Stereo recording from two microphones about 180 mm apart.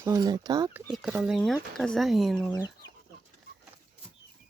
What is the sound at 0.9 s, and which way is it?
Speech, centre (ahead or behind).